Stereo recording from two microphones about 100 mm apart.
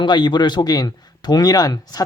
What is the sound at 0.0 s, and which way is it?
Speech, 50° left (ahead or behind).